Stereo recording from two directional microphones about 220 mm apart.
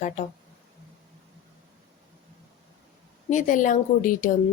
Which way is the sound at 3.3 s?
35° left (ahead or behind).